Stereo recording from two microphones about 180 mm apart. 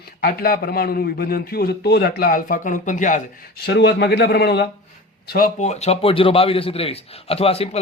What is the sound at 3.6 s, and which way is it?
A man's voice, 65° left (ahead or behind).